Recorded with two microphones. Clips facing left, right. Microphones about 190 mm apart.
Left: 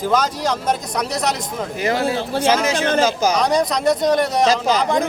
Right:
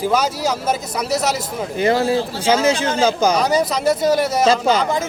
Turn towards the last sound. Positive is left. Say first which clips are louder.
# even
turn(degrees=0)  # may be behind; listen again after turning